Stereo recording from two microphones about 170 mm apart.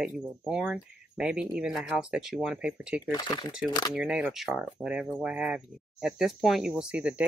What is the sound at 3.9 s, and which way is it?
Speech, 5° right (ahead or behind).